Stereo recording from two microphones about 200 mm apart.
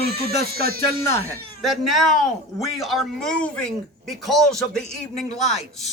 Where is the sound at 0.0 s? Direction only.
55° right (ahead or behind).